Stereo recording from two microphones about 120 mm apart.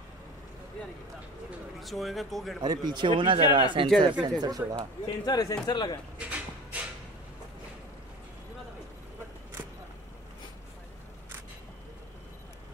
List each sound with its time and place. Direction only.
1.8 s speech: centre (ahead or behind)
2.6 s speech: 35° right (ahead or behind)
5.0 s a man's voice: 35° left (ahead or behind)
6.1 s a sound: 10° right (ahead or behind)